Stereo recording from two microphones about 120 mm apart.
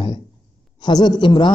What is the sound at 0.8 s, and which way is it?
Speech, 35° left (ahead or behind).